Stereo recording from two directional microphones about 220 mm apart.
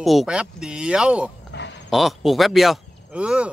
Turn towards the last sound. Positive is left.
turn(degrees=-5)  # may be behind; listen again after turning